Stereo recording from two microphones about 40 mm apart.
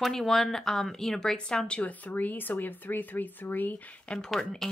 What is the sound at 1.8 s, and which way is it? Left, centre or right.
Speech, left.